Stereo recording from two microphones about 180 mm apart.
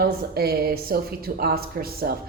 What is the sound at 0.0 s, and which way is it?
Speech, 60° right (ahead or behind).